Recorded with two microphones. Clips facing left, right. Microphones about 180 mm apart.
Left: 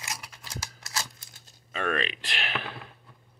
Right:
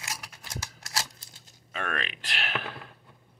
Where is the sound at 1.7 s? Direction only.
5° right (ahead or behind).